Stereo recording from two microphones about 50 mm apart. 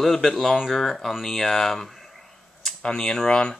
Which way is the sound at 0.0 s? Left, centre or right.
Centre.